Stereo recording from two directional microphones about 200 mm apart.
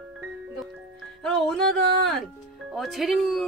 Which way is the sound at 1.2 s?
Centre (ahead or behind).